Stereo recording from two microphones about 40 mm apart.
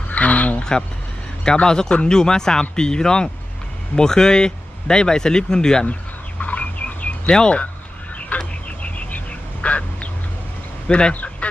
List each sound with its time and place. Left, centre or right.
0.1 s a sound: left
0.6 s vehicle: centre
1.6 s speech: centre
6.4 s bird: left
7.3 s speech: left
8.3 s frog: left
8.8 s a sound: left
10.8 s speech: left
11.1 s a sound: left